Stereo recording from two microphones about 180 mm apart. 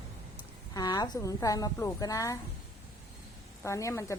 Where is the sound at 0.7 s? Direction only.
20° left (ahead or behind).